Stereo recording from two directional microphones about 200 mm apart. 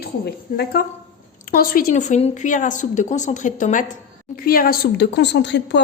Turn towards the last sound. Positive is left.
turn(degrees=60)  # may be behind; listen again after turning